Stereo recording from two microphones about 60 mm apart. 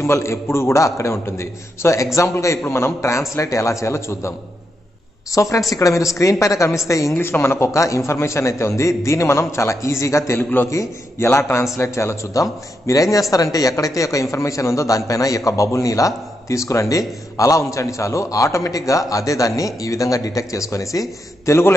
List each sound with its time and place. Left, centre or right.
0.0 s a man's voice: left
5.3 s a man's voice: left
7.2 s a man's voice: left
11.1 s a man's voice: left
18.7 s speech: left